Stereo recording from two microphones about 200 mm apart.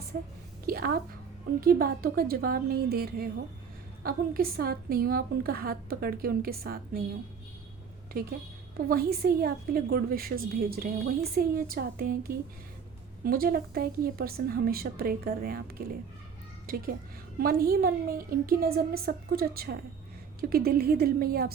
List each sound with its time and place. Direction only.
0.6 s a sound: 50° right (ahead or behind)
1.6 s a woman's voice: 50° right (ahead or behind)
8.1 s a woman's voice: 50° right (ahead or behind)